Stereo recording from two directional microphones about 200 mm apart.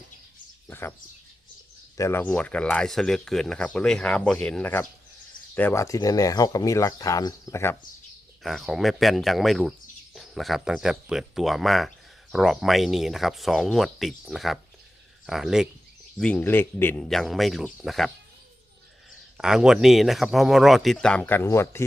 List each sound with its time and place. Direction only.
0.7 s speech: 10° left (ahead or behind)
2.0 s speech: 10° left (ahead or behind)
8.4 s speech: centre (ahead or behind)
19.4 s speech: 5° right (ahead or behind); by 21.8 s 15° left (ahead or behind)